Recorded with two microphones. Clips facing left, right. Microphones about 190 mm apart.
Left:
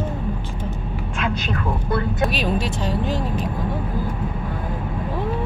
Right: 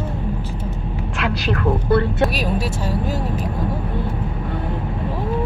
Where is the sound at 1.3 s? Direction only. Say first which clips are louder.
Right 7 dB; 70° right (ahead or behind).